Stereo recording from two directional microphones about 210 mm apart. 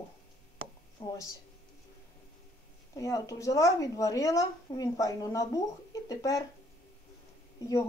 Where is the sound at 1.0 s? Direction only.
30° left (ahead or behind).